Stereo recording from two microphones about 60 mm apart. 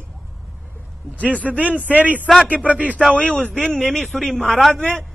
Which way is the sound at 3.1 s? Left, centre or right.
Left.